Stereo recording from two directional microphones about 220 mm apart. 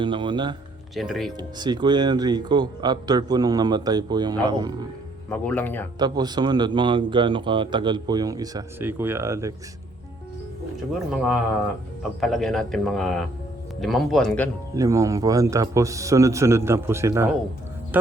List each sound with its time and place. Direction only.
0.0 s a man's voice: 20° right (ahead or behind)
0.9 s a man's voice: centre (ahead or behind)
1.4 s a man's voice: 20° right (ahead or behind)
5.3 s speech: 10° left (ahead or behind)
6.0 s a man's voice: 20° right (ahead or behind)
12.2 s a man's voice: centre (ahead or behind)
14.8 s a man's voice: 15° right (ahead or behind)